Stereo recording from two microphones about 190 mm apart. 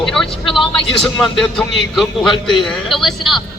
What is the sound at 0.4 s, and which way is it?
Speech, 25° left (ahead or behind).